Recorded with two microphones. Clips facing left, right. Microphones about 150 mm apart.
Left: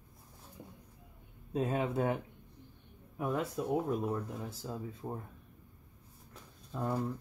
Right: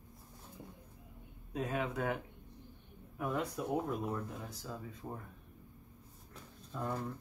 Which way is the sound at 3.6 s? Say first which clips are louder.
Left 3 dB; 25° left (ahead or behind).